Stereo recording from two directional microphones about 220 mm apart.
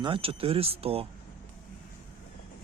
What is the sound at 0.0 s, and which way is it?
Speech, 25° right (ahead or behind).